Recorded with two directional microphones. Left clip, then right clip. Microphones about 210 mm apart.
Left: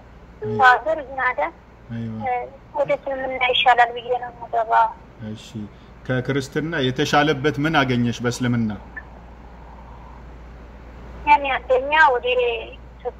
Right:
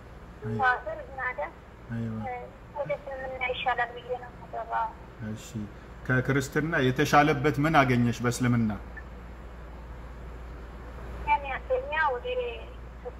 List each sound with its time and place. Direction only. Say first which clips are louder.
0.6 s a woman's voice: left 12 dB; 50° left (ahead or behind)
6.0 s a man's voice: left 4 dB; centre (ahead or behind)
11.2 s a woman's voice: left 11 dB; 50° left (ahead or behind)